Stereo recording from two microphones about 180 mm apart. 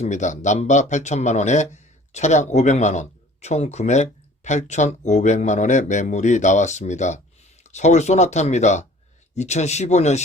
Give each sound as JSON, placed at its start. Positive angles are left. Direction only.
{"t": 0.0, "sound": "speech", "side_deg": 40}